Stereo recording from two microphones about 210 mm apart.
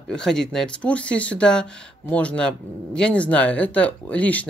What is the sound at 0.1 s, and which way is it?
Speech, 5° left (ahead or behind).